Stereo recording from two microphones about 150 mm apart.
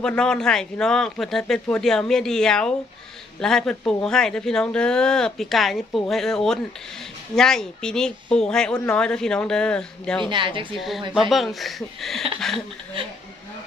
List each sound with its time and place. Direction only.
0.0 s speech: 5° left (ahead or behind)
10.2 s a woman's voice: 35° right (ahead or behind)
10.8 s speech: centre (ahead or behind)